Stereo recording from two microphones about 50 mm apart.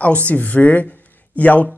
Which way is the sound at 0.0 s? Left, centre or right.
Left.